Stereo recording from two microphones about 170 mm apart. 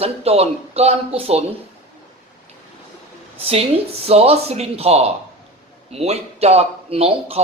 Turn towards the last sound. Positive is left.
turn(degrees=-35)  # may be behind; listen again after turning